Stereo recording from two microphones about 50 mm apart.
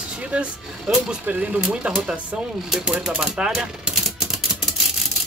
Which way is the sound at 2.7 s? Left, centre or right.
Centre.